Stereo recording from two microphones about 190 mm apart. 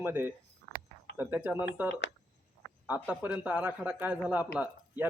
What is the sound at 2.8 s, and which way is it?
A man's voice, 10° right (ahead or behind).